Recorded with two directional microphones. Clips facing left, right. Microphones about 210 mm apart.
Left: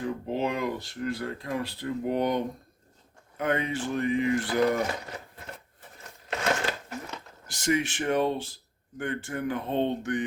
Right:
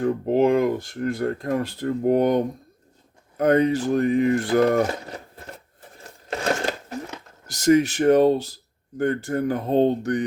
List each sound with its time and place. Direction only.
0.0 s speech: 50° right (ahead or behind)
7.4 s speech: 40° right (ahead or behind)